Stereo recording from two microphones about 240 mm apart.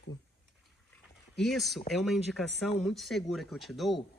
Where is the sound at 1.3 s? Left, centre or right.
Centre.